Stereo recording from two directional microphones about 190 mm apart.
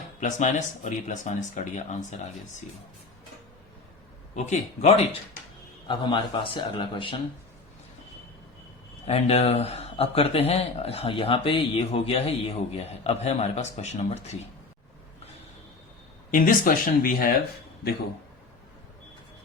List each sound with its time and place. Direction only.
0.2 s speech: 40° left (ahead or behind)
4.4 s speech: 35° left (ahead or behind)
5.9 s a man's voice: 25° left (ahead or behind)
9.0 s speech: 35° left (ahead or behind)
16.3 s speech: 45° left (ahead or behind)